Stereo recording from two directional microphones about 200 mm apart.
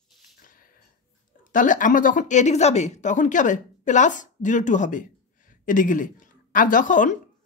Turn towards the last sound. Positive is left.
turn(degrees=40)  # may be behind; listen again after turning